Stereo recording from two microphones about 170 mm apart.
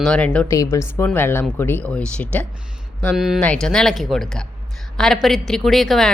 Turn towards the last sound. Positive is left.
turn(degrees=0)  # may be behind; listen again after turning